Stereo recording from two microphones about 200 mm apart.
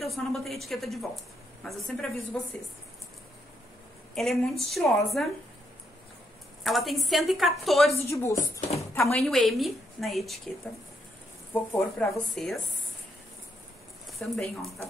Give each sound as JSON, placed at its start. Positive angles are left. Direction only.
{"t": 0.0, "sound": "a woman's voice", "side_deg": 0}
{"t": 4.1, "sound": "a woman's voice", "side_deg": 0}
{"t": 6.6, "sound": "a woman's voice", "side_deg": 0}
{"t": 8.1, "sound": "speech", "side_deg": 15}
{"t": 8.7, "sound": "a sound", "side_deg": 15}
{"t": 9.2, "sound": "a woman's voice", "side_deg": 0}
{"t": 11.5, "sound": "speech", "side_deg": 10}
{"t": 12.1, "sound": "a woman's voice", "side_deg": 0}
{"t": 14.1, "sound": "speech", "side_deg": 0}